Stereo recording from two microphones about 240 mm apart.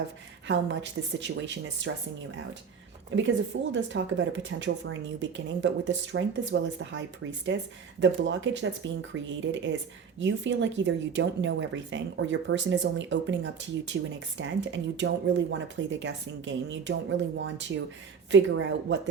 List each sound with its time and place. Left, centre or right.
0.4 s speech: right
3.2 s speech: right
10.2 s speech: right